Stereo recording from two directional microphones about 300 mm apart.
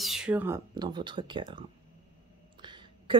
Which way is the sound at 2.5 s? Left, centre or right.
Centre.